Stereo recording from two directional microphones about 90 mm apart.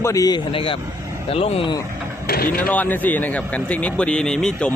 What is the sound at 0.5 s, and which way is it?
Speech, 85° left.